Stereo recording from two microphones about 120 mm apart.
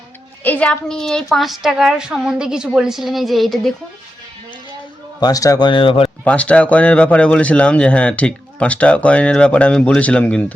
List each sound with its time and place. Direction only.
0.4 s a woman's voice: 10° left (ahead or behind)
5.2 s speech: 30° left (ahead or behind)
5.6 s speech: 45° left (ahead or behind)
6.2 s speech: 10° left (ahead or behind)